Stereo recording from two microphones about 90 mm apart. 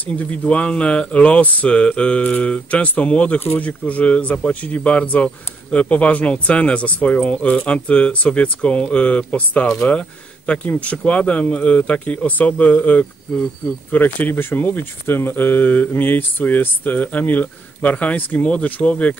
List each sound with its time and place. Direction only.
0.1 s speech: 15° left (ahead or behind)